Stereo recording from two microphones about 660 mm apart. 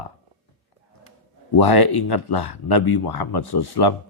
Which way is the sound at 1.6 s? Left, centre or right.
Left.